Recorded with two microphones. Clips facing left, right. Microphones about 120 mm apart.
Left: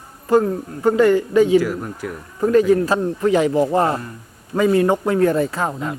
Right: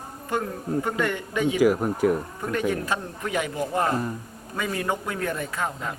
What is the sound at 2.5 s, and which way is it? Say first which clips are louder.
Speech: left 11 dB; 35° left (ahead or behind).